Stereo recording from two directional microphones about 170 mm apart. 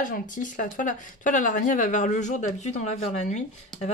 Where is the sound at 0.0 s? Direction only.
50° left (ahead or behind).